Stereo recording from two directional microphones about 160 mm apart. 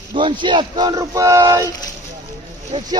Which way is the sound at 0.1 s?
30° right (ahead or behind).